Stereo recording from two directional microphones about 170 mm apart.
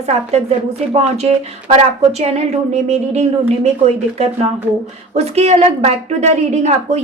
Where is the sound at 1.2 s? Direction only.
35° right (ahead or behind).